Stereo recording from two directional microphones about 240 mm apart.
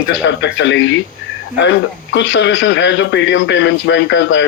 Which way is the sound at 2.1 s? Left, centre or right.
Left.